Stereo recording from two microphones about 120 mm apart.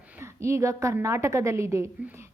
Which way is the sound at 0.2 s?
25° right (ahead or behind).